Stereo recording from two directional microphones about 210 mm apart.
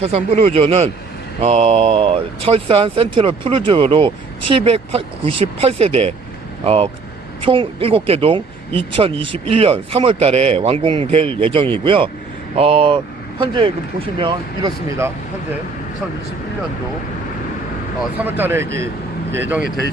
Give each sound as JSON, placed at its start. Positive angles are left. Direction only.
{"t": 0.0, "sound": "speech", "side_deg": -30}
{"t": 18.0, "sound": "speech", "side_deg": -10}